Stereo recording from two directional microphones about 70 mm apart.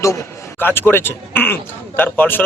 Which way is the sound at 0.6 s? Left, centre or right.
Left.